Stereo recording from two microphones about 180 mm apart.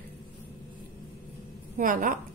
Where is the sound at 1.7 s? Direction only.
50° right (ahead or behind).